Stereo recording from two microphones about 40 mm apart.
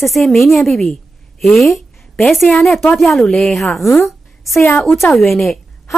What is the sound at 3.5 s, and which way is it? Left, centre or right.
Speech, centre.